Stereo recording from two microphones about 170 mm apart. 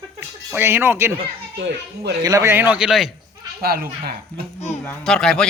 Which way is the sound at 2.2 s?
20° right (ahead or behind).